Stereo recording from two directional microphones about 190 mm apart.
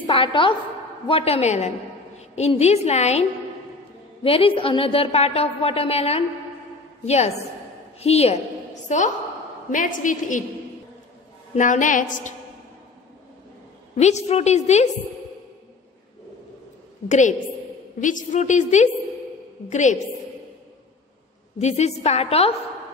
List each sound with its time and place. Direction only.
0.0 s a woman's voice: 25° left (ahead or behind)
11.5 s a woman's voice: 40° left (ahead or behind)
13.9 s a woman's voice: 35° left (ahead or behind)
17.1 s a woman's voice: 40° left (ahead or behind)
21.5 s a woman's voice: 35° left (ahead or behind)